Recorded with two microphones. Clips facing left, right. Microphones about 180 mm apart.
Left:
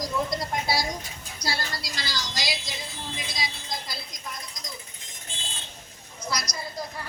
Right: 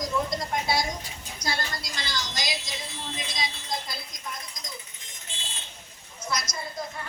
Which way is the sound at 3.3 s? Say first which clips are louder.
Right 4 dB; 25° right (ahead or behind).